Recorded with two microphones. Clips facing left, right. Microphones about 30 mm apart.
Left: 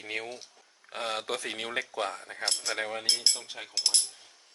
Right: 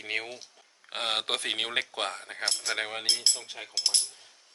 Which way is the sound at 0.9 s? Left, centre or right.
Right.